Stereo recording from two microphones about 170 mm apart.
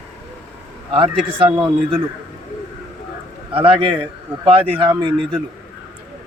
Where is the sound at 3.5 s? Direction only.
30° right (ahead or behind).